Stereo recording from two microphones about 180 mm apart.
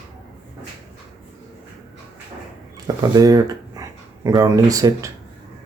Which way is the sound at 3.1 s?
20° right (ahead or behind).